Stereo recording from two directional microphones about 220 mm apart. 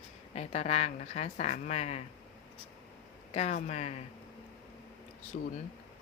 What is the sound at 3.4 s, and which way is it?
Speech, 30° left (ahead or behind).